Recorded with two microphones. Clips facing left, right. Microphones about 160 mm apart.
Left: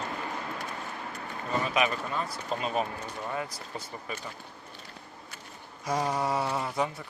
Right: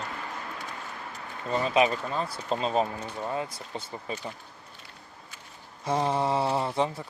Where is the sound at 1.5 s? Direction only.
30° right (ahead or behind).